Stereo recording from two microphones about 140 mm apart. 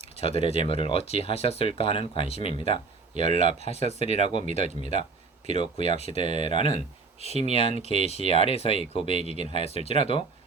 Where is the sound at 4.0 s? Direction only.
55° right (ahead or behind).